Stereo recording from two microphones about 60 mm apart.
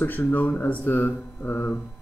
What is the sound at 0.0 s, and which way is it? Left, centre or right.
Speech, left.